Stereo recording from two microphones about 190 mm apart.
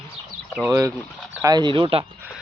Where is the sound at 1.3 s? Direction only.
20° right (ahead or behind).